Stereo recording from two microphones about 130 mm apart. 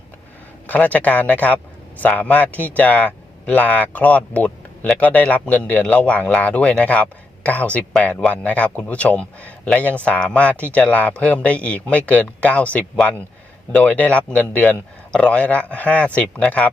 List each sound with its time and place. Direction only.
0.7 s a man's voice: 10° left (ahead or behind)